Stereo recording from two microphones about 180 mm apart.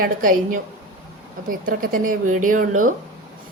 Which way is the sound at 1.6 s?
50° right (ahead or behind).